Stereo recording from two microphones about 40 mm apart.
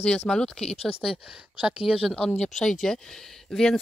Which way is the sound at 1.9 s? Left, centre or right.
Centre.